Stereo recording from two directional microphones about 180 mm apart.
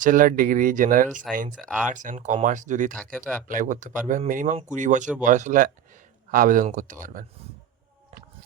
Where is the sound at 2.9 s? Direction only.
5° left (ahead or behind).